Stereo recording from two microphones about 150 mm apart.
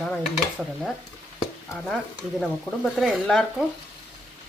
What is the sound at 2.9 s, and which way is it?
Speech, centre (ahead or behind).